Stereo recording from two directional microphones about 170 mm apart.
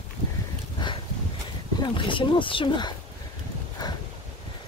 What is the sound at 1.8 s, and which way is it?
Speech, 30° left (ahead or behind).